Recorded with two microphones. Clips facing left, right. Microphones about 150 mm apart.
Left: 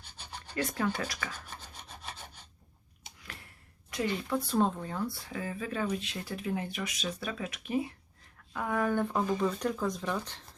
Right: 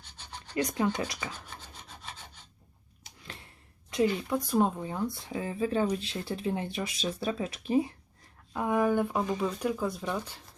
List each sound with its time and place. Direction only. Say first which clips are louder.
0.5 s speech: right 3 dB; 20° right (ahead or behind)
1.7 s rub: left 1 dB; 15° left (ahead or behind)
3.2 s a sound: right 3 dB; 25° right (ahead or behind)
4.3 s speech: right 2 dB; 15° right (ahead or behind); by 7.9 s 30° right (ahead or behind)
8.5 s speech: right 4 dB; 20° right (ahead or behind)